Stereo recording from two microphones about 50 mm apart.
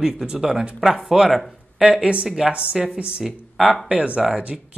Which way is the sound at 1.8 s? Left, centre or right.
Centre.